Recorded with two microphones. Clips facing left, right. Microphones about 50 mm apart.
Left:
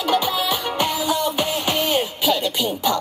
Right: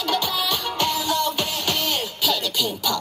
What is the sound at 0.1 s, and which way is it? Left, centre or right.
Music, centre.